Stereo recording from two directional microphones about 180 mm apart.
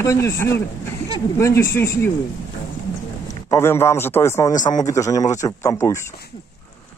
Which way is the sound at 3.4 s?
15° left (ahead or behind).